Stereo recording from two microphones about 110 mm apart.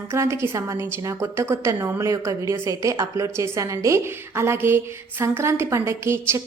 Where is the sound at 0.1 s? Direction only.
25° right (ahead or behind).